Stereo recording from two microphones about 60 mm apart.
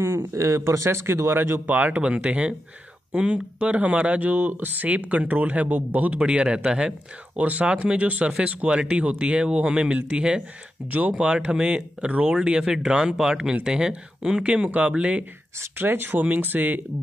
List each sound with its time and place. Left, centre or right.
0.0 s speech: right
11.1 s speech: centre
15.8 s speech: right